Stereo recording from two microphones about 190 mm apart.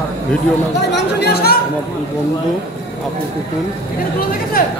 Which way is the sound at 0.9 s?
60° left (ahead or behind).